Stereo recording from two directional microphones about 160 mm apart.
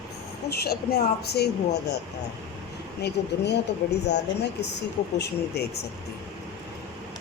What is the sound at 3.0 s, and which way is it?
Speech, 90° left.